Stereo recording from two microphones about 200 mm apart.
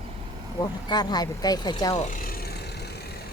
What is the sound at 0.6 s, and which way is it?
A woman's voice, 20° left (ahead or behind).